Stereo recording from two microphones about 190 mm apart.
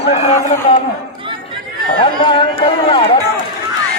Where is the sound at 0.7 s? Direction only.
30° left (ahead or behind).